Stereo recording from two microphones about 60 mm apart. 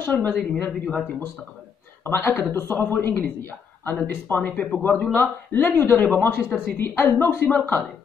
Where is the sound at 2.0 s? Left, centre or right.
Left.